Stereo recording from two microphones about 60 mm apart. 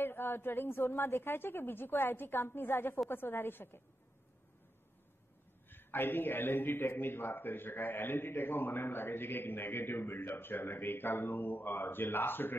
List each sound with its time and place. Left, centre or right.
0.0 s a man's voice: left
5.7 s a man's voice: left